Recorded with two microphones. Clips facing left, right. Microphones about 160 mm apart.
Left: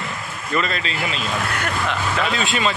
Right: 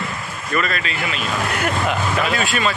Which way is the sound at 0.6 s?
25° left (ahead or behind).